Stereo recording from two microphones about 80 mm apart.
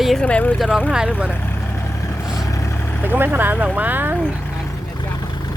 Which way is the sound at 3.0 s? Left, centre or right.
Right.